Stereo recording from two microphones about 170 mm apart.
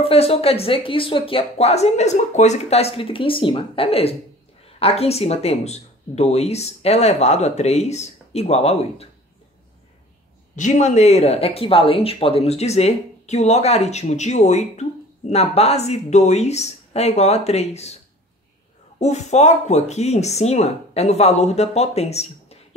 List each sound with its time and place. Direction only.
0.0 s speech: 35° left (ahead or behind)
10.5 s speech: 45° left (ahead or behind)
18.9 s speech: 40° left (ahead or behind)